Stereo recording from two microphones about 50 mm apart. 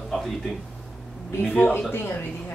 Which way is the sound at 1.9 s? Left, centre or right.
Left.